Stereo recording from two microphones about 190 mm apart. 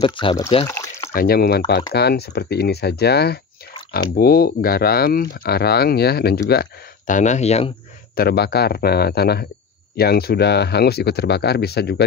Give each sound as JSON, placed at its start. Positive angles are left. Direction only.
{"t": 0.0, "sound": "speech", "side_deg": 25}
{"t": 0.7, "sound": "a sound", "side_deg": 15}
{"t": 1.1, "sound": "speech", "side_deg": 55}
{"t": 7.2, "sound": "speech", "side_deg": 40}
{"t": 8.2, "sound": "speech", "side_deg": 55}